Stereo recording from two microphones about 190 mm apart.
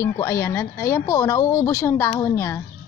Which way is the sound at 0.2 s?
15° left (ahead or behind).